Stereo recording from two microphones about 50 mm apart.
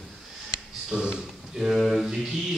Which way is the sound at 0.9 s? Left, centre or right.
Centre.